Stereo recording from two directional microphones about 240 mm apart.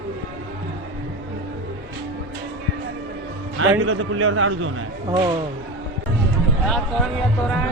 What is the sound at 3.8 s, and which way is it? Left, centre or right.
Speech, right.